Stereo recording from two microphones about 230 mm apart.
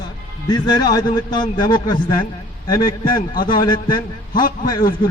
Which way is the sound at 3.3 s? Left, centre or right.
Left.